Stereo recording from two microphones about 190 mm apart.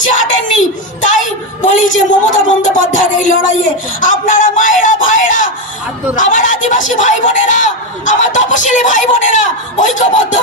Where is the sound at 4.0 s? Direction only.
45° left (ahead or behind).